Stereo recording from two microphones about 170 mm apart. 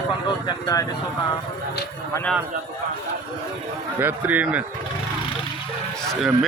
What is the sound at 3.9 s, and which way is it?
Speech, 10° right (ahead or behind).